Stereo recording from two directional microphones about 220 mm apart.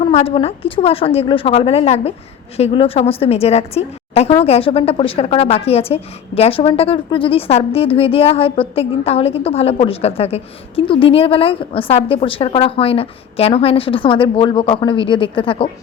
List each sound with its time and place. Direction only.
0.0 s a woman's voice: 25° left (ahead or behind)